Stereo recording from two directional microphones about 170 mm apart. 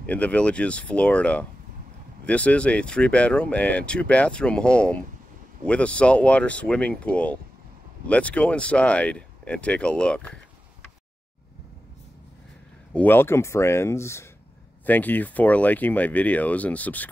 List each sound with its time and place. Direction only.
0.0 s speech: 10° left (ahead or behind)
12.9 s speech: 10° left (ahead or behind)